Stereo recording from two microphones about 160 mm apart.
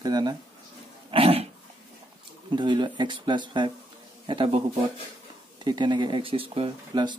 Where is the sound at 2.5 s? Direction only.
30° right (ahead or behind).